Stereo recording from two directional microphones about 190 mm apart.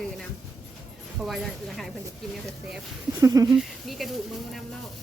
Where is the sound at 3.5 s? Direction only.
Centre (ahead or behind).